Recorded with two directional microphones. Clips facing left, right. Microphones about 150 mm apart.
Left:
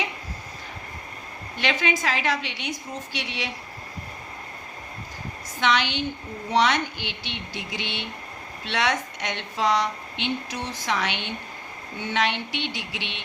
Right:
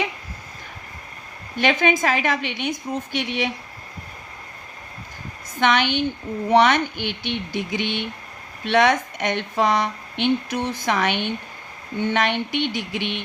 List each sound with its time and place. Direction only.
1.5 s a woman's voice: 50° right (ahead or behind)
5.5 s a woman's voice: 55° right (ahead or behind)